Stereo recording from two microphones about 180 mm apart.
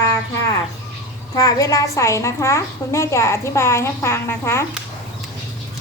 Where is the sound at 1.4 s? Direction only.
20° left (ahead or behind).